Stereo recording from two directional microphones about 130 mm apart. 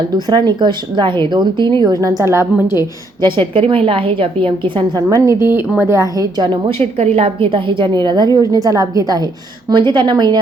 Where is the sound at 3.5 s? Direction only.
45° right (ahead or behind).